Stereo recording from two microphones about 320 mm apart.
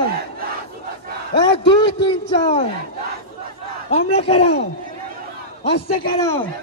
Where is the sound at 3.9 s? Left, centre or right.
Centre.